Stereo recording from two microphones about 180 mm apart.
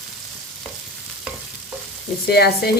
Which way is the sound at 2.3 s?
60° left (ahead or behind).